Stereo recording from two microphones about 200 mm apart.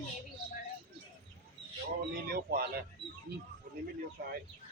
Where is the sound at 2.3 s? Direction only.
50° right (ahead or behind).